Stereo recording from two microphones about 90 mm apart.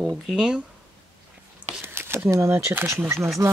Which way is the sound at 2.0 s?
25° right (ahead or behind).